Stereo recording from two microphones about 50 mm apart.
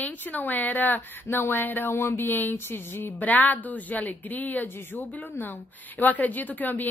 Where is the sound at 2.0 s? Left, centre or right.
Left.